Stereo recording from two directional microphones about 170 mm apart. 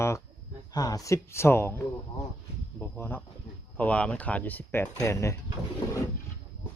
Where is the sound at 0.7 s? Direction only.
20° left (ahead or behind).